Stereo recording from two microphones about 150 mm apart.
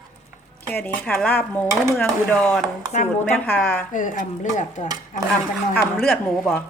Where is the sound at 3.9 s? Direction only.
60° left (ahead or behind).